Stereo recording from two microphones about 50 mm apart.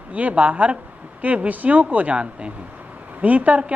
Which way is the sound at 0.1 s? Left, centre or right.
Right.